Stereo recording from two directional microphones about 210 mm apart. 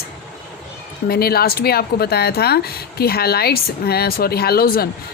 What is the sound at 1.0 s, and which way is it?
A woman's voice, 45° left (ahead or behind).